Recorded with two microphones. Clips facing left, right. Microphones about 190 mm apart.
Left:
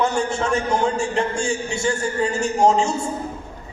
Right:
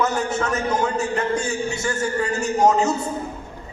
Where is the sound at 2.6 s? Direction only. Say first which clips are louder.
Even; 25° left (ahead or behind).